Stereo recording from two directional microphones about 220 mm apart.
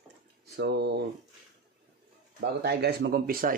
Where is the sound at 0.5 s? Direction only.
50° right (ahead or behind).